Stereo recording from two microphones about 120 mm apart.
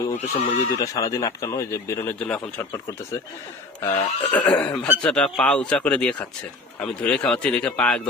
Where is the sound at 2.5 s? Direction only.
25° left (ahead or behind).